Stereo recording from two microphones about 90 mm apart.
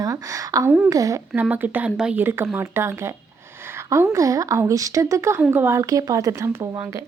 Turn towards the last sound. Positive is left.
turn(degrees=-35)  # may be behind; listen again after turning